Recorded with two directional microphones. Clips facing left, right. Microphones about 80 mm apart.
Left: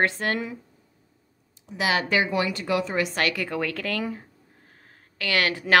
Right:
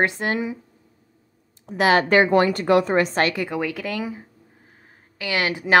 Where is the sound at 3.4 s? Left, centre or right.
Centre.